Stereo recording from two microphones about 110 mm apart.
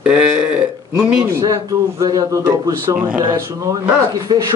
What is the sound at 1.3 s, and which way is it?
A man's voice, 30° right (ahead or behind).